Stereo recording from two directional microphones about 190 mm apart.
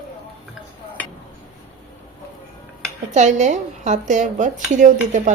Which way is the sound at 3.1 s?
40° right (ahead or behind).